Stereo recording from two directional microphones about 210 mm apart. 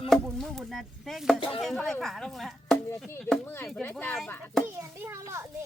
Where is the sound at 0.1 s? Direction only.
Centre (ahead or behind).